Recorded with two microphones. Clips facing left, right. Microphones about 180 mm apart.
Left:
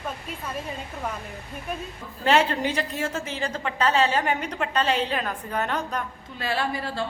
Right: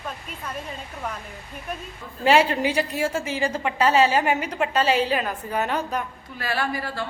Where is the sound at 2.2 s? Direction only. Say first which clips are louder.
Right 3 dB; 10° right (ahead or behind).